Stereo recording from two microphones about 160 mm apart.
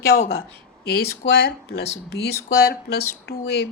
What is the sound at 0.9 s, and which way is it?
Speech, 80° left.